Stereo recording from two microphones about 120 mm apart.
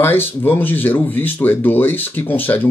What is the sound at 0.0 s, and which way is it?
Speech, 20° left (ahead or behind).